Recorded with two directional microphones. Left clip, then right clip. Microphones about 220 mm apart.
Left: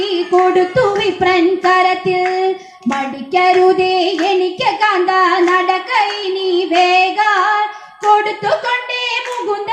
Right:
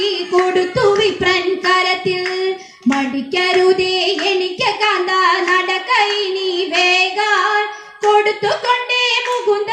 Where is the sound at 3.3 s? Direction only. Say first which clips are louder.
Left 3 dB; 40° right (ahead or behind).